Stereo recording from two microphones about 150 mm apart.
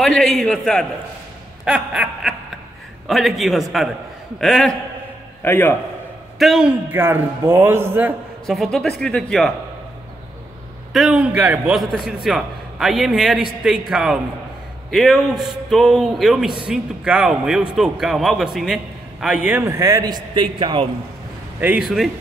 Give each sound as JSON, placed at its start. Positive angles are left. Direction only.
{"t": 0.0, "sound": "a man's voice", "side_deg": 0}
{"t": 1.6, "sound": "a sound", "side_deg": -5}
{"t": 3.1, "sound": "a man's voice", "side_deg": 0}
{"t": 5.4, "sound": "a man's voice", "side_deg": 15}
{"t": 6.3, "sound": "a man's voice", "side_deg": 0}
{"t": 6.9, "sound": "a man's voice", "side_deg": -15}
{"t": 8.5, "sound": "a man's voice", "side_deg": 0}
{"t": 10.9, "sound": "a man's voice", "side_deg": 0}
{"t": 21.5, "sound": "a man's voice", "side_deg": -10}